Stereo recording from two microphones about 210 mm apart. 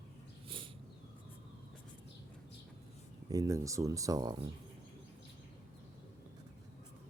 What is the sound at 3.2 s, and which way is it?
Speech, 15° right (ahead or behind).